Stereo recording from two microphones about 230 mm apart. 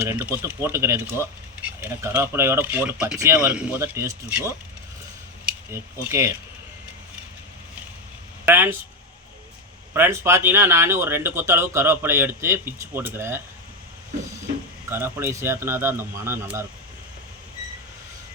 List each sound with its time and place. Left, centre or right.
0.0 s speech: centre
8.4 s speech: centre
9.9 s speech: centre
14.8 s speech: centre